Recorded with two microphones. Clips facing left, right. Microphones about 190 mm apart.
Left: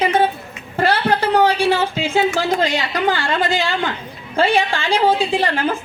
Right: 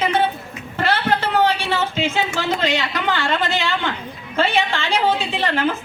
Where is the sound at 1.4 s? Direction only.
15° left (ahead or behind).